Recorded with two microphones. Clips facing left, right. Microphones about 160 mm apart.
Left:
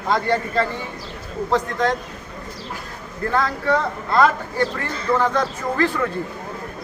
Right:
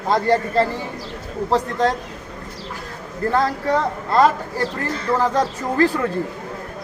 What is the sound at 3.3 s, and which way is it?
Speech, 35° right (ahead or behind).